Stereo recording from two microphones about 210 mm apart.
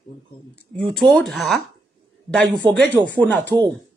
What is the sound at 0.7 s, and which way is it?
A man's voice, centre (ahead or behind).